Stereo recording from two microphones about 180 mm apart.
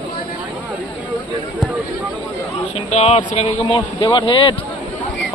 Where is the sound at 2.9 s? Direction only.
35° left (ahead or behind).